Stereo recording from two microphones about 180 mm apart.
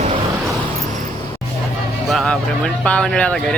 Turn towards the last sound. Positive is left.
turn(degrees=5)  # may be behind; listen again after turning